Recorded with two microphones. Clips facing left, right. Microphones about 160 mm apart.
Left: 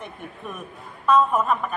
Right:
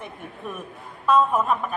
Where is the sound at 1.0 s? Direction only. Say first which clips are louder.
Left 1 dB; centre (ahead or behind).